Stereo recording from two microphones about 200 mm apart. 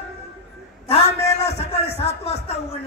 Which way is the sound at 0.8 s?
30° left (ahead or behind).